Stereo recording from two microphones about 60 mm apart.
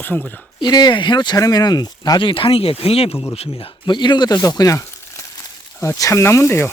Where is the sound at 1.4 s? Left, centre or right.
Left.